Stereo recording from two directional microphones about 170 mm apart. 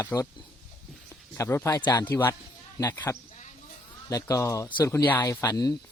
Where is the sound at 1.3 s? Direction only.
15° left (ahead or behind).